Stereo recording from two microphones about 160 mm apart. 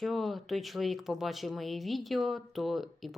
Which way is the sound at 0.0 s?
Centre (ahead or behind).